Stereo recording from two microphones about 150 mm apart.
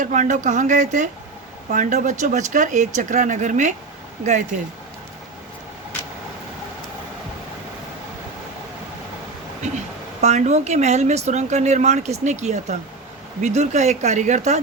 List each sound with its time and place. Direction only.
0.0 s speech: 55° right (ahead or behind)
9.7 s a woman's voice: 50° right (ahead or behind)